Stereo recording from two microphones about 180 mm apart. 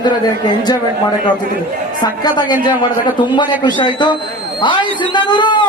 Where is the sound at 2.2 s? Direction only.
25° left (ahead or behind).